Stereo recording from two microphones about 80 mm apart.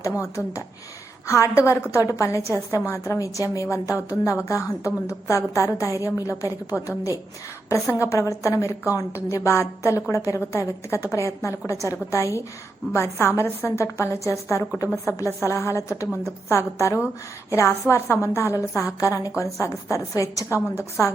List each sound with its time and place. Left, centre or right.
0.2 s a woman's voice: left